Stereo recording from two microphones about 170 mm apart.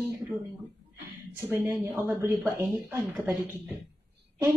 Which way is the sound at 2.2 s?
15° right (ahead or behind).